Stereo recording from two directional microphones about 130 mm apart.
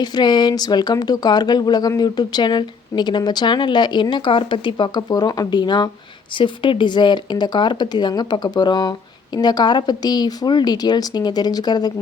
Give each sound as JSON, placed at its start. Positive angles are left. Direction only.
{"t": 0.0, "sound": "speech", "side_deg": 35}